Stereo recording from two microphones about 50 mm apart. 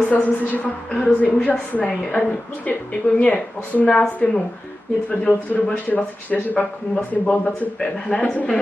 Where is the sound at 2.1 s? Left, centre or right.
Centre.